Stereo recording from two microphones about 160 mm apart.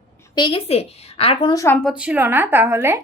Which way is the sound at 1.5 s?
15° left (ahead or behind).